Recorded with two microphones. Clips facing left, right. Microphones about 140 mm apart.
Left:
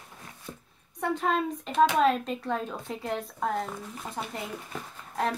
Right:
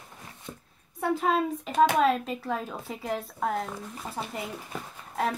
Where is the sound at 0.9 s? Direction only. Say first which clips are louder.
Right 2 dB; 5° right (ahead or behind).